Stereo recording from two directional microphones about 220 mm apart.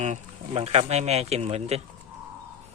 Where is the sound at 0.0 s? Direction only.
30° right (ahead or behind).